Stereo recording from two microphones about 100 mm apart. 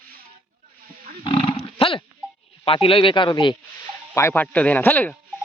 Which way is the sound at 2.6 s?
65° left (ahead or behind).